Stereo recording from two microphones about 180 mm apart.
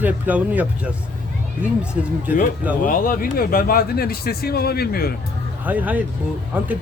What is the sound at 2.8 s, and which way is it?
Speech, 50° left (ahead or behind).